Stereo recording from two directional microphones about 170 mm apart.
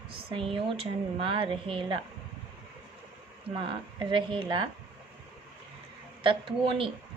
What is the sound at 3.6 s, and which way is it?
A woman's voice, 30° right (ahead or behind).